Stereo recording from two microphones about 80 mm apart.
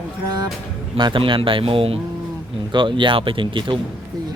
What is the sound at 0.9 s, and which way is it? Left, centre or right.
Speech, right.